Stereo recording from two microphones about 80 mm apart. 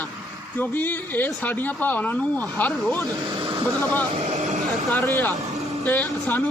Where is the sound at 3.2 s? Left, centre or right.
Right.